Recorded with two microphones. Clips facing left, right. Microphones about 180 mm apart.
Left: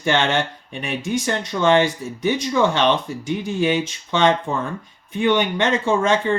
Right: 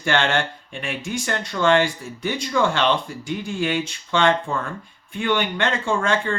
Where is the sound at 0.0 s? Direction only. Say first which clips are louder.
Left 2 dB; 20° left (ahead or behind).